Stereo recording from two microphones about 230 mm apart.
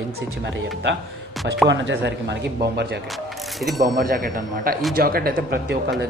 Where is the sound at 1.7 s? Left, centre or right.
Right.